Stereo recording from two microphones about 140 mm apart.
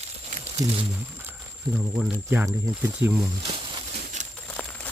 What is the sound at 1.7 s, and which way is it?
Speech, 5° right (ahead or behind).